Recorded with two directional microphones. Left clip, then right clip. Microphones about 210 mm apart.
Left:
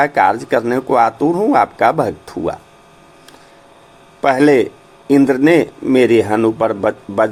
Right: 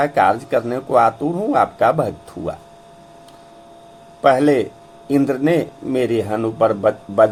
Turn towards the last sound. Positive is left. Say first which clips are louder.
# right 1 dB
turn(degrees=15)  # may be behind; listen again after turning